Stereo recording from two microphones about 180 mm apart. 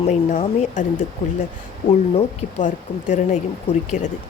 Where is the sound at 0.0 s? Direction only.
40° left (ahead or behind).